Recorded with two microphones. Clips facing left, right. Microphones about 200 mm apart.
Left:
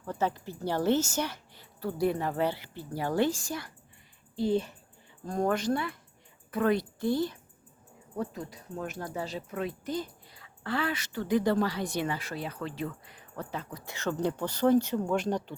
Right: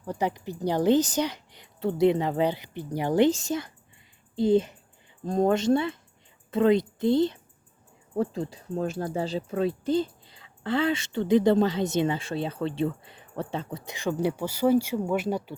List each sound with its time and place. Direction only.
0.0 s a woman's voice: 15° right (ahead or behind)
13.9 s a woman's voice: 15° right (ahead or behind)